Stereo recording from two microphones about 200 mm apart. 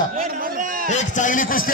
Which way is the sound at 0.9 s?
35° left (ahead or behind).